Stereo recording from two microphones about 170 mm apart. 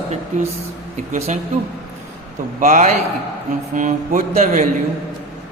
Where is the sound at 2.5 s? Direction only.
50° right (ahead or behind).